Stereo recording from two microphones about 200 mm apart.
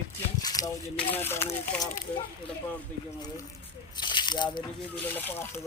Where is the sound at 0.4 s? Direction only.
20° left (ahead or behind).